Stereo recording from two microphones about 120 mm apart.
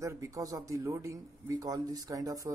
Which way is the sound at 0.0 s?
25° right (ahead or behind).